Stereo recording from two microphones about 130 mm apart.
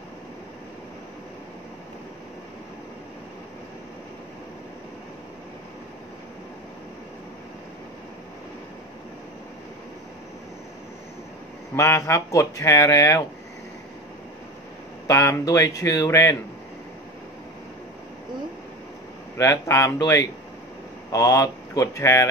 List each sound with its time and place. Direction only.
11.7 s speech: 20° left (ahead or behind)
15.0 s speech: 20° left (ahead or behind)
19.3 s speech: 20° left (ahead or behind)